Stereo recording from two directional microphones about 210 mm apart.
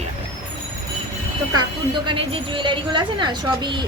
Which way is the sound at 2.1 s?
25° right (ahead or behind).